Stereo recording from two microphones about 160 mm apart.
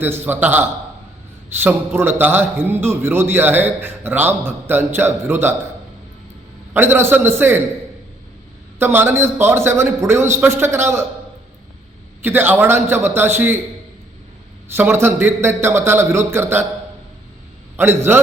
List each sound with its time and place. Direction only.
0.0 s a man's voice: 10° right (ahead or behind)
6.7 s a man's voice: 15° right (ahead or behind)
8.8 s a man's voice: 15° right (ahead or behind)
12.2 s a man's voice: 15° right (ahead or behind)
14.7 s a man's voice: 15° right (ahead or behind)
17.7 s a man's voice: 15° right (ahead or behind)